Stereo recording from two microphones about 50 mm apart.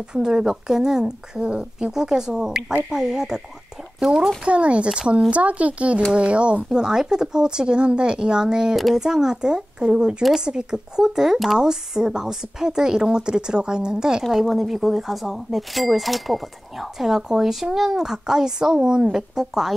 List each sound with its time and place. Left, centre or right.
0.1 s a woman's voice: centre
4.5 s a woman's voice: right
14.2 s a woman's voice: centre